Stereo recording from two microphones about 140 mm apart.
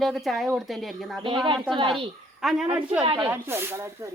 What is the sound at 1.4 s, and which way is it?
Speech, 35° right (ahead or behind).